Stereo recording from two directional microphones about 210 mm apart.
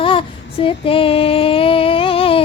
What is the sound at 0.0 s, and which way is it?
Female singing, 25° left (ahead or behind).